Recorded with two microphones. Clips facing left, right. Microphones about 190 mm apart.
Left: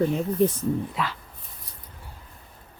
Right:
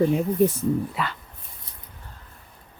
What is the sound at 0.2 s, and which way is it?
Speech, 10° right (ahead or behind).